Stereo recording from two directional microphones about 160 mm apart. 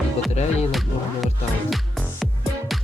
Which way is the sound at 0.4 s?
45° left (ahead or behind).